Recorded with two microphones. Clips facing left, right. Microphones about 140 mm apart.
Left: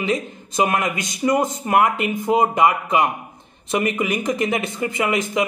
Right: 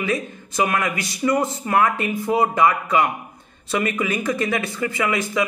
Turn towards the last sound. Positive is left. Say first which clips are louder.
# left 1 dB
turn(degrees=20)  # may be behind; listen again after turning